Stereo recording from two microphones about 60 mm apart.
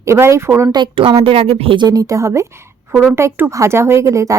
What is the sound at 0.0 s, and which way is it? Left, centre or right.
Speech, right.